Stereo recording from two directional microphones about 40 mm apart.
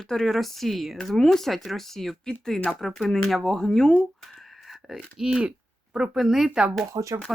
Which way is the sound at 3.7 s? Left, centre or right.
Centre.